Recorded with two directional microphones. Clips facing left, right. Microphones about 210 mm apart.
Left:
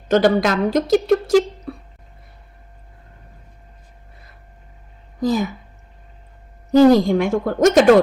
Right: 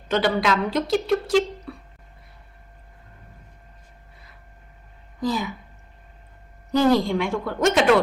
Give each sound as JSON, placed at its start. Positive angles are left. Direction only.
{"t": 0.1, "sound": "speech", "side_deg": 45}
{"t": 5.2, "sound": "speech", "side_deg": 45}
{"t": 6.7, "sound": "speech", "side_deg": 45}